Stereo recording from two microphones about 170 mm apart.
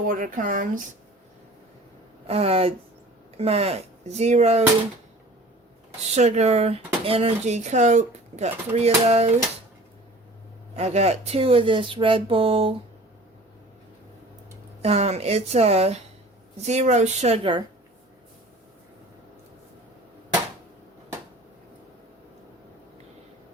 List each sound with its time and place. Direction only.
0.0 s speech: 55° right (ahead or behind)
2.2 s speech: 35° right (ahead or behind)
6.1 s speech: 40° right (ahead or behind)
10.8 s speech: 40° right (ahead or behind)
14.8 s speech: 35° right (ahead or behind)